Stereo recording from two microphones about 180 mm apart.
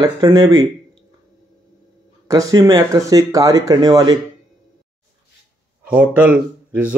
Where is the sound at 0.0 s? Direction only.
20° right (ahead or behind).